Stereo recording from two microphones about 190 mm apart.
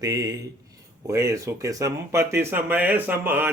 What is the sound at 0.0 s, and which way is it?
A man's voice, 20° right (ahead or behind).